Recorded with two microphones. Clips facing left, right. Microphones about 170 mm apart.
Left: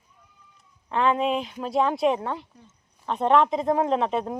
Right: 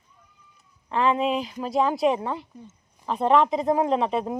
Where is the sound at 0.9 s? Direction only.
Centre (ahead or behind).